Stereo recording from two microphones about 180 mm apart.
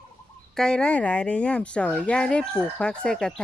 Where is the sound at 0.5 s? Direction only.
5° left (ahead or behind).